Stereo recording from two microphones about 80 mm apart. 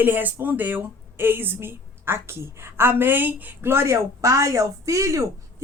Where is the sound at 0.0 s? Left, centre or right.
Right.